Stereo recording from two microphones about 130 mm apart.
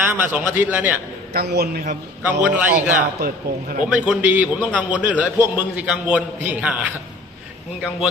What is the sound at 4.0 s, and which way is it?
A man's voice, 10° right (ahead or behind).